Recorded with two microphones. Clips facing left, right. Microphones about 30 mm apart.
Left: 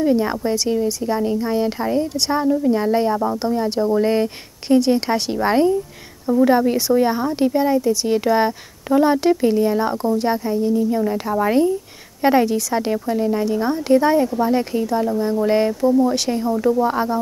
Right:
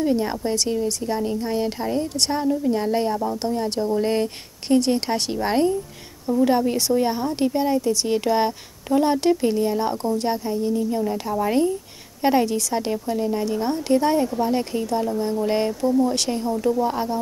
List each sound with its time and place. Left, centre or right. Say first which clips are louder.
0.0 s speech: left 4 dB; centre
7.0 s speech: left 4 dB; centre
11.0 s speech: left 4 dB; centre